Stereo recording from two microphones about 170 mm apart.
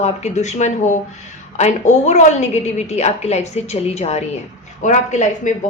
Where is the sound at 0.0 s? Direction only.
40° left (ahead or behind).